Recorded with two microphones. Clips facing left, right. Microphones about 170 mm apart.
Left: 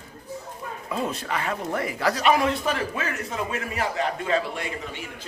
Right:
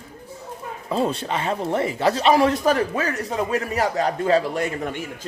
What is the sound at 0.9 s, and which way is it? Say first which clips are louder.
A man's voice: right 5 dB; 30° right (ahead or behind).